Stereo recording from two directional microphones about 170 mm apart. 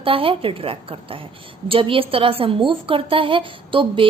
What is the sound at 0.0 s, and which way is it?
A woman's voice, 30° right (ahead or behind).